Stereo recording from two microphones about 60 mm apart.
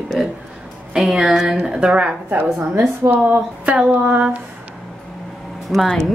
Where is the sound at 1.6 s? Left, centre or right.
Centre.